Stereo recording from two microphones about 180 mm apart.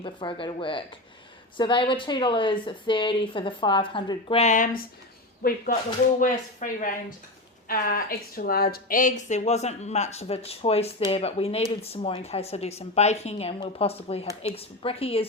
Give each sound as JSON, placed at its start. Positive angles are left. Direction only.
{"t": 0.0, "sound": "a woman's voice", "side_deg": 25}